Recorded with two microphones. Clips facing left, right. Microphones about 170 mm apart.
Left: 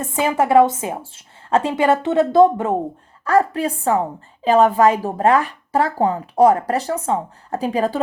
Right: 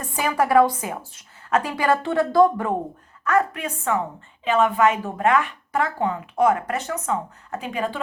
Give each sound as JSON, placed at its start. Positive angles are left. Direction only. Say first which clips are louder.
{"t": 0.0, "sound": "speech", "louder": "left 4 dB", "side_deg": 25}
{"t": 3.2, "sound": "a woman's voice", "louder": "left 5 dB", "side_deg": 35}